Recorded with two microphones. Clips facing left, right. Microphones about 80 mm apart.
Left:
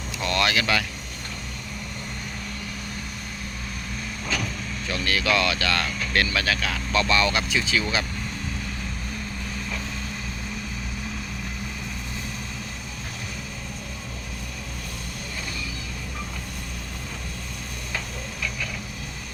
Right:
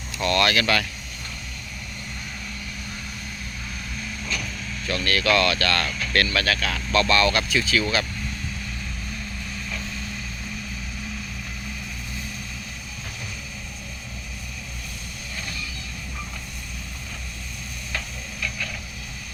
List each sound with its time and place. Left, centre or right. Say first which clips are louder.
0.2 s speech: right 3 dB; centre
4.9 s speech: right 2 dB; centre